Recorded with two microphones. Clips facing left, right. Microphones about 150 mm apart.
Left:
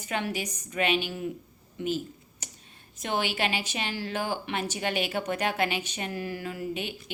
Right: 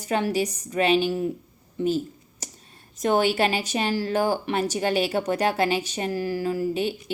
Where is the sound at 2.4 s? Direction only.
40° right (ahead or behind).